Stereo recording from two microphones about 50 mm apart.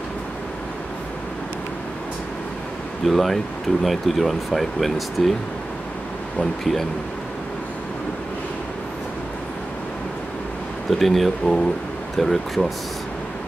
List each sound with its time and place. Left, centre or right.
3.1 s speech: centre
6.6 s speech: centre
10.9 s speech: centre